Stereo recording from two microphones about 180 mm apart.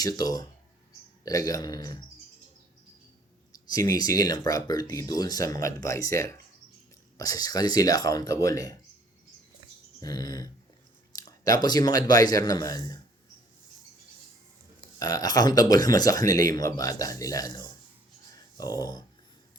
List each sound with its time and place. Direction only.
0.0 s speech: 20° left (ahead or behind)
3.9 s speech: 20° left (ahead or behind)
10.0 s speech: 20° left (ahead or behind)
14.9 s speech: 20° left (ahead or behind)